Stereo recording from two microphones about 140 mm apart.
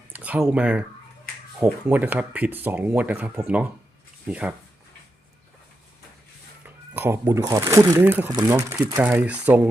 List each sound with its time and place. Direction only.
0.1 s speech: 10° right (ahead or behind)
6.7 s speech: 15° right (ahead or behind)